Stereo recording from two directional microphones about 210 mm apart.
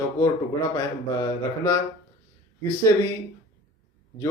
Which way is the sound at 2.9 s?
15° left (ahead or behind).